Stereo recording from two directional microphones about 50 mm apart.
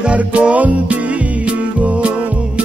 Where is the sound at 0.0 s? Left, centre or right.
Right.